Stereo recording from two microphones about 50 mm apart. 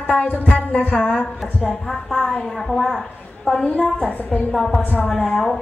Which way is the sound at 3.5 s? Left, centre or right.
Left.